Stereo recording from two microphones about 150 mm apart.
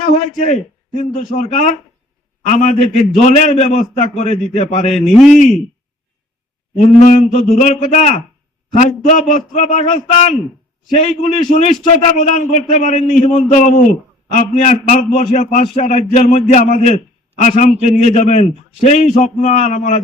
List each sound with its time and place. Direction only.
0.1 s a man's voice: 45° left (ahead or behind)
5.1 s a man's voice: centre (ahead or behind)
6.7 s a man's voice: 60° left (ahead or behind)
9.7 s a man's voice: 45° left (ahead or behind)